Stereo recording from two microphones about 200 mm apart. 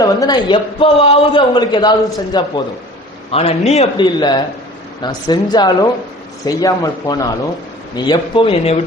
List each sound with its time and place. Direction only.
0.0 s a man's voice: 20° left (ahead or behind)
3.3 s a man's voice: 30° left (ahead or behind)